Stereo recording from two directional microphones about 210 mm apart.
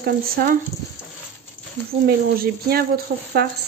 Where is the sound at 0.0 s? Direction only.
45° right (ahead or behind).